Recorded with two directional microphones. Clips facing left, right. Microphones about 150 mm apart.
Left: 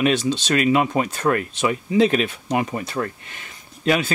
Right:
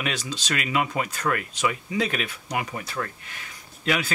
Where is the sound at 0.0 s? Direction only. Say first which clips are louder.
Left 11 dB; 25° left (ahead or behind).